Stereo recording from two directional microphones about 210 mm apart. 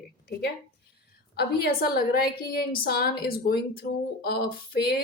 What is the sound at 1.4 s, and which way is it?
Speech, 50° left (ahead or behind).